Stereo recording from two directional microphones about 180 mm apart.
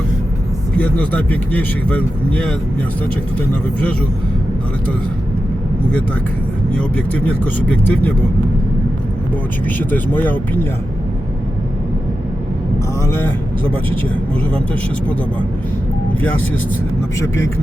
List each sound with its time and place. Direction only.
0.8 s a man's voice: 10° left (ahead or behind)
6.7 s a man's voice: 10° left (ahead or behind)
9.6 s a man's voice: 10° left (ahead or behind)
13.1 s a man's voice: 10° left (ahead or behind)
17.2 s a man's voice: 15° left (ahead or behind)